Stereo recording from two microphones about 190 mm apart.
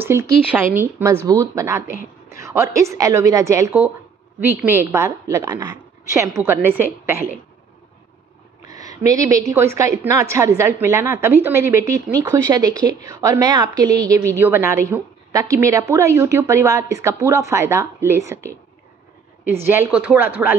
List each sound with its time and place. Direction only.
0.0 s a woman's voice: 10° right (ahead or behind)
8.6 s a woman's voice: 20° right (ahead or behind)